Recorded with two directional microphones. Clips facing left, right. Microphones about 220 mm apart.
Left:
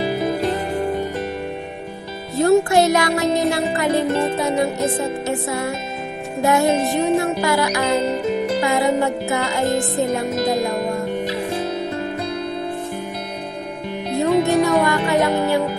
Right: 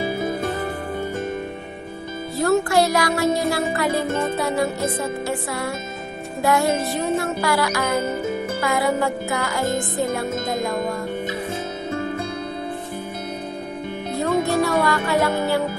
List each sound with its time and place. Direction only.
2.3 s music: 20° left (ahead or behind)
14.1 s music: 20° left (ahead or behind)